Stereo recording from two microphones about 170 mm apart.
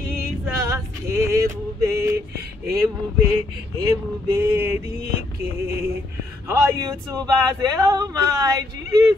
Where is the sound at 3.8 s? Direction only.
20° right (ahead or behind).